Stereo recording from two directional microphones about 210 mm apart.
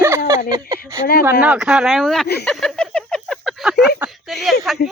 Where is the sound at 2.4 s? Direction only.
5° left (ahead or behind).